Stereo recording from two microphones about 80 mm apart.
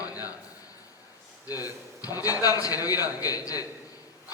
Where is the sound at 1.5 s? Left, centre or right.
Left.